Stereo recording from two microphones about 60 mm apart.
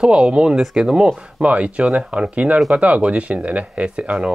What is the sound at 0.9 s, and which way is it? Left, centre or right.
Speech, centre.